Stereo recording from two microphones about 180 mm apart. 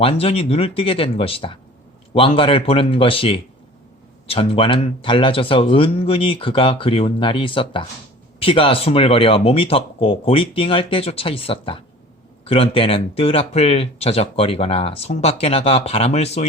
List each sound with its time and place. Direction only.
0.0 s speech: 35° left (ahead or behind)